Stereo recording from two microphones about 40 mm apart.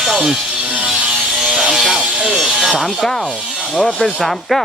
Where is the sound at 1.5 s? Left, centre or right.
Centre.